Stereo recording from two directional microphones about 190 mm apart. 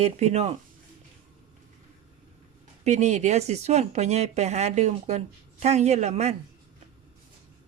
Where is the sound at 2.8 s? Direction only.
35° right (ahead or behind).